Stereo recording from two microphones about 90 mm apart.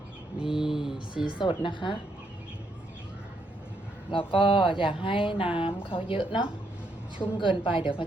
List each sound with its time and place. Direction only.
0.3 s mantra: 5° right (ahead or behind)
0.9 s a woman's voice: 60° left (ahead or behind)
4.1 s speech: 75° left (ahead or behind)
5.8 s speech: 75° left (ahead or behind)